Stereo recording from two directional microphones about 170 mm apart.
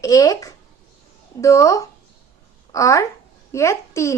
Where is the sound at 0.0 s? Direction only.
20° left (ahead or behind).